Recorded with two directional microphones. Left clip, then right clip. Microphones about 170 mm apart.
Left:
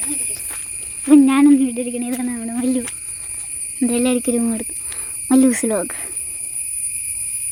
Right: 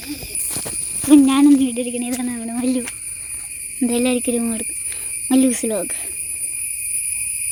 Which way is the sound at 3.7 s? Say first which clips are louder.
Even; 10° left (ahead or behind).